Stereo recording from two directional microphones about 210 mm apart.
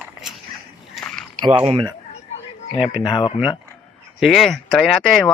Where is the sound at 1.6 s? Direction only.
25° right (ahead or behind).